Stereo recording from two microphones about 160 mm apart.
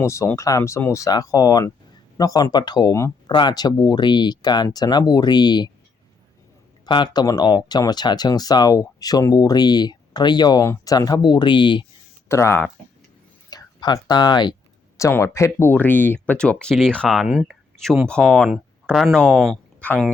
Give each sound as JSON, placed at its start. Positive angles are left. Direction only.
{"t": 0.0, "sound": "speech", "side_deg": 15}
{"t": 6.8, "sound": "speech", "side_deg": 30}
{"t": 12.3, "sound": "speech", "side_deg": 15}